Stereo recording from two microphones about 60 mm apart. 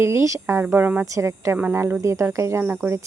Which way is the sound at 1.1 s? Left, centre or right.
Right.